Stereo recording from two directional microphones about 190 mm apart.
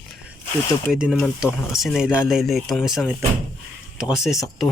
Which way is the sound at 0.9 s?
Centre (ahead or behind).